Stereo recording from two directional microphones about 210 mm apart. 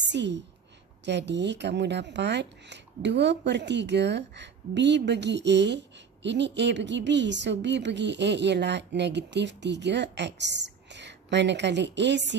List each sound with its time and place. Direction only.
0.0 s a woman's voice: 55° right (ahead or behind)